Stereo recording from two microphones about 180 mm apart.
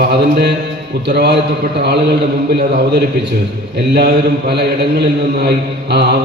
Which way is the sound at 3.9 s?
65° right (ahead or behind).